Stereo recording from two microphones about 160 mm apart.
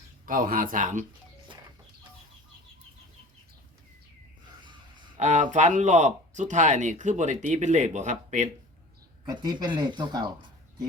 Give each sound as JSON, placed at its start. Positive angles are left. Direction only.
{"t": 0.3, "sound": "speech", "side_deg": -60}
{"t": 4.6, "sound": "a sound", "side_deg": -30}
{"t": 5.2, "sound": "speech", "side_deg": -50}
{"t": 9.2, "sound": "speech", "side_deg": -25}